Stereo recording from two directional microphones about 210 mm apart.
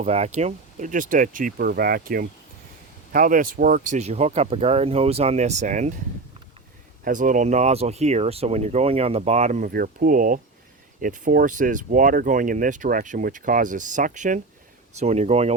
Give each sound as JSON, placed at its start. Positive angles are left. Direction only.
{"t": 0.0, "sound": "speech", "side_deg": -30}
{"t": 7.0, "sound": "speech", "side_deg": -40}